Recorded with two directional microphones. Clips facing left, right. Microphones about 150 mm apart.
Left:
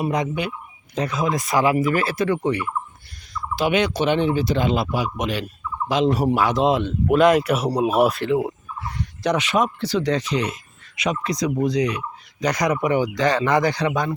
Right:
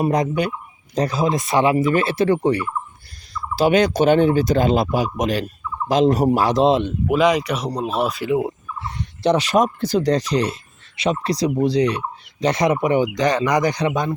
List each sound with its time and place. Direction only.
0.0 s a man's voice: 40° right (ahead or behind)
7.1 s speech: centre (ahead or behind)
8.3 s speech: 20° right (ahead or behind)